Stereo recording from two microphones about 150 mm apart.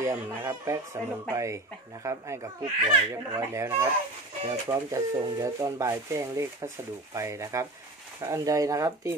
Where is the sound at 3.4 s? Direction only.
20° right (ahead or behind).